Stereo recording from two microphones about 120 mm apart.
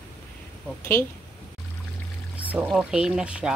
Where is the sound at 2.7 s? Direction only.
5° right (ahead or behind).